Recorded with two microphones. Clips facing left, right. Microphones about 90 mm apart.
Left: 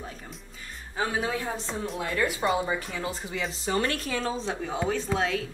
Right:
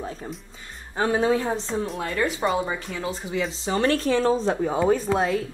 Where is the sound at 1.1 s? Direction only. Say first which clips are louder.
Right 11 dB; 30° right (ahead or behind).